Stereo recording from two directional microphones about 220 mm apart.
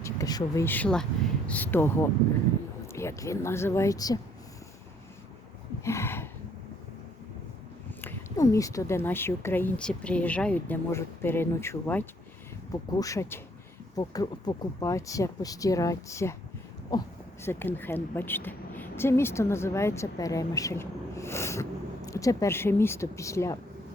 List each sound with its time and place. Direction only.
0.0 s a woman's voice: 15° left (ahead or behind)
5.8 s a sound: 10° left (ahead or behind)
8.0 s a woman's voice: 15° left (ahead or behind)